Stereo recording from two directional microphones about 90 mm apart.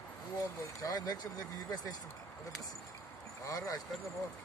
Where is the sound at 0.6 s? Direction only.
45° left (ahead or behind).